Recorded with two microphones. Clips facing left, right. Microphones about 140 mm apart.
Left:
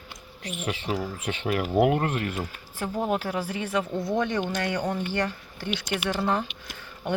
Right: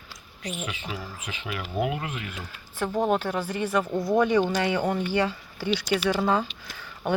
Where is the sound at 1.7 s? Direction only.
55° left (ahead or behind).